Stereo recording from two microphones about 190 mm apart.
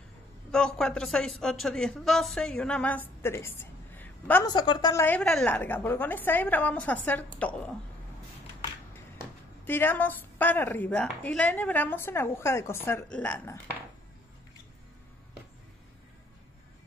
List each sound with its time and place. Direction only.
0.5 s a woman's voice: 5° left (ahead or behind)
3.2 s a sound: 10° left (ahead or behind)
4.5 s a woman's voice: 25° left (ahead or behind)
5.0 s a woman's voice: 5° left (ahead or behind)
9.7 s a woman's voice: 10° left (ahead or behind)